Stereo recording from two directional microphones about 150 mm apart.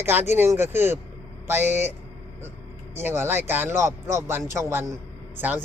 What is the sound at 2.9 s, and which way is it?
Speech, 15° right (ahead or behind).